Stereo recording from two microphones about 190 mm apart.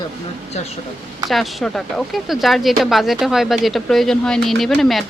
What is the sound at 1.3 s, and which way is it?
Speech, centre (ahead or behind).